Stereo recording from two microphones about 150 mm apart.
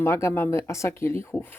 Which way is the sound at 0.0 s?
15° left (ahead or behind).